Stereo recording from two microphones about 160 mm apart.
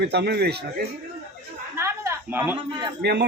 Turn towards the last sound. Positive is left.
turn(degrees=-90)